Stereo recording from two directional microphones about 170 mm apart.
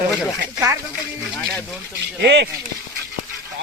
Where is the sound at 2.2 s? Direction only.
90° right.